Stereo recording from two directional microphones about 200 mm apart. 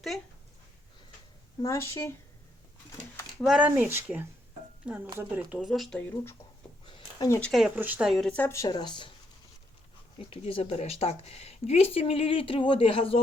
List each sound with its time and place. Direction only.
1.6 s speech: 15° left (ahead or behind)
3.4 s speech: 5° right (ahead or behind)
6.8 s a sound: 20° left (ahead or behind)
7.5 s speech: 5° right (ahead or behind); by 9.0 s 20° left (ahead or behind)
10.2 s speech: 30° left (ahead or behind)